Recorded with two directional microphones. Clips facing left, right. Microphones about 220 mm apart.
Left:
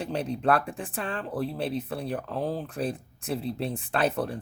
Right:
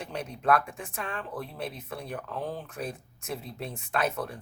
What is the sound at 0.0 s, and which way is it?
Speech, 30° left (ahead or behind).